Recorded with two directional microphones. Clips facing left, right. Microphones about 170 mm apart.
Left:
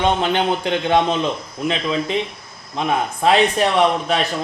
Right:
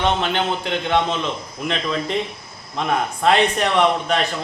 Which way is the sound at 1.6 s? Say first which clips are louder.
Left 2 dB; 5° left (ahead or behind).